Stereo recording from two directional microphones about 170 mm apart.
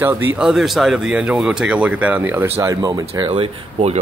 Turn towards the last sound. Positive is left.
turn(degrees=-35)  # may be behind; listen again after turning